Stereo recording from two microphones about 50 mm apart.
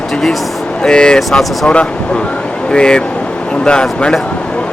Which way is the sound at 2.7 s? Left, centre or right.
Centre.